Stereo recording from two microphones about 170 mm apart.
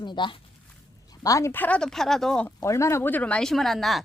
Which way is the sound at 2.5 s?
15° left (ahead or behind).